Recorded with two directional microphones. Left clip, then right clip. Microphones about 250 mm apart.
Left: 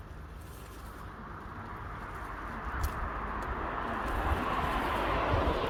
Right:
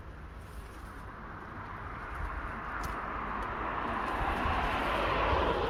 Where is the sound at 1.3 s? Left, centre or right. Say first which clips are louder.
Right 1 dB; right.